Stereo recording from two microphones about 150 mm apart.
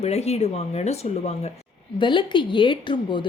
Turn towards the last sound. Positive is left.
turn(degrees=30)  # may be behind; listen again after turning